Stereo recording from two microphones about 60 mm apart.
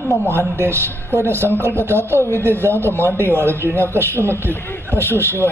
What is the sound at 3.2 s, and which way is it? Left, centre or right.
A man's voice, right.